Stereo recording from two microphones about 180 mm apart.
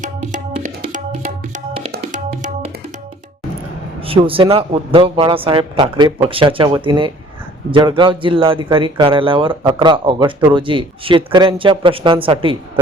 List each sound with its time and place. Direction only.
0.6 s music: 45° right (ahead or behind)
4.0 s a man's voice: 30° right (ahead or behind)